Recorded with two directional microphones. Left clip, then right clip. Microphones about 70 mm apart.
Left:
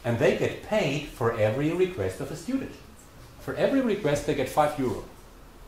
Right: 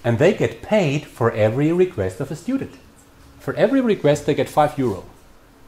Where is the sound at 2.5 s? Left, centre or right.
Right.